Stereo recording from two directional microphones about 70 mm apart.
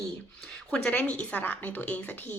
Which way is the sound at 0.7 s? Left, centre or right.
Centre.